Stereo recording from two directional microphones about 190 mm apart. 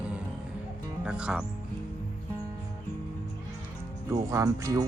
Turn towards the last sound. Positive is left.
turn(degrees=-15)  # may be behind; listen again after turning